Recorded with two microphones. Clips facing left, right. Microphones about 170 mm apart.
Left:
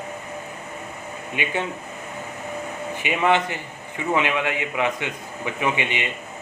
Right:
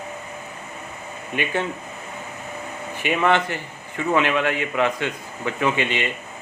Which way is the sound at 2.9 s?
15° left (ahead or behind).